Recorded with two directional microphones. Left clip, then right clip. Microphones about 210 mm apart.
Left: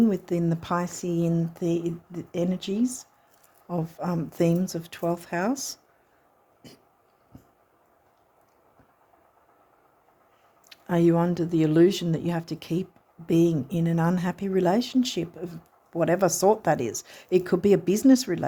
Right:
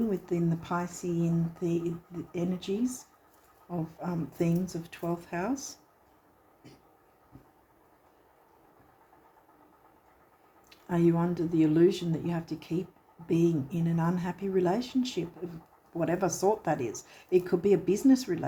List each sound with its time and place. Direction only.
0.1 s speech: 55° left (ahead or behind)
6.6 s a sound: 55° left (ahead or behind)
10.7 s speech: 55° left (ahead or behind)